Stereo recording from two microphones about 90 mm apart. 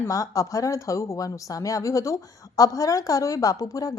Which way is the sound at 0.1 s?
40° left (ahead or behind).